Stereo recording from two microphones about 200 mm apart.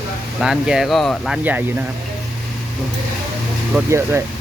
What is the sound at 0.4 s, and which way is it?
Speech, centre (ahead or behind).